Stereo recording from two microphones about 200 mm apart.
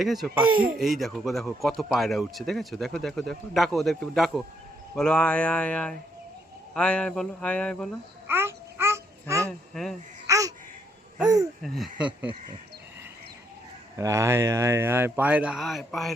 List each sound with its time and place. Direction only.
0.0 s speech: centre (ahead or behind)
8.3 s babbling: 10° right (ahead or behind)
9.5 s a sound: centre (ahead or behind)
10.2 s babbling: 15° right (ahead or behind)
11.6 s speech: centre (ahead or behind)
14.0 s speech: 15° right (ahead or behind); by 16.1 s centre (ahead or behind)